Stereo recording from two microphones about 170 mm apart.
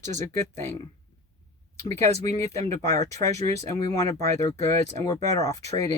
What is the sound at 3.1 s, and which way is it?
Speech, 40° right (ahead or behind).